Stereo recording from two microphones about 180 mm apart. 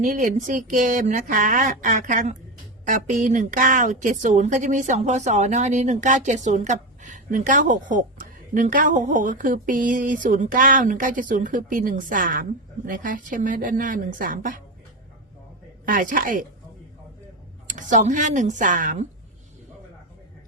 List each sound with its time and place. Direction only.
0.0 s a woman's voice: 50° right (ahead or behind)
15.9 s a woman's voice: 50° right (ahead or behind)
17.7 s a woman's voice: 45° right (ahead or behind)